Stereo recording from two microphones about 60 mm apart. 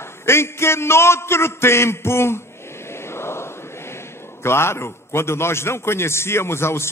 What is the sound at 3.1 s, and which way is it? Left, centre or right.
Chant, left.